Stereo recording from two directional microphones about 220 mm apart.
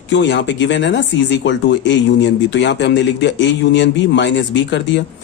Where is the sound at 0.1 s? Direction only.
55° left (ahead or behind).